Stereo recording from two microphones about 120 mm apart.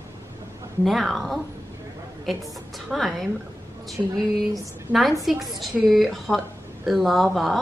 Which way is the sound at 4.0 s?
20° right (ahead or behind).